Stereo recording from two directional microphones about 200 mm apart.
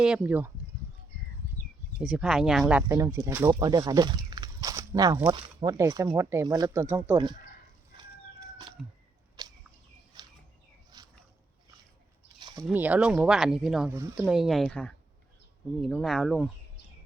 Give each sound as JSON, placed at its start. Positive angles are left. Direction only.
{"t": 0.0, "sound": "speech", "side_deg": -5}
{"t": 2.0, "sound": "speech", "side_deg": -5}
{"t": 8.8, "sound": "speech", "side_deg": 0}
{"t": 9.4, "sound": "a sound", "side_deg": -20}
{"t": 10.1, "sound": "bird", "side_deg": -20}
{"t": 10.9, "sound": "a sound", "side_deg": -20}
{"t": 12.4, "sound": "a sound", "side_deg": -20}
{"t": 12.6, "sound": "speech", "side_deg": -10}
{"t": 13.9, "sound": "speech", "side_deg": -15}
{"t": 14.3, "sound": "speech", "side_deg": 0}